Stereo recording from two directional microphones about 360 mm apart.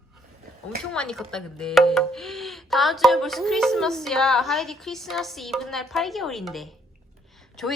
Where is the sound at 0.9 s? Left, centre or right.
Centre.